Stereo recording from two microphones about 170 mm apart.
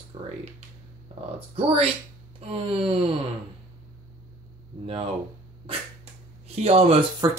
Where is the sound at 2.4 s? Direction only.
35° right (ahead or behind).